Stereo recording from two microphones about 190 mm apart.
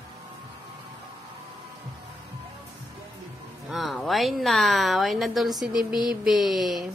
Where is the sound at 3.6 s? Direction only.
Centre (ahead or behind).